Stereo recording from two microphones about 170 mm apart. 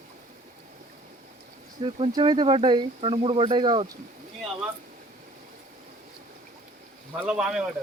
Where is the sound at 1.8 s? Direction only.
35° right (ahead or behind).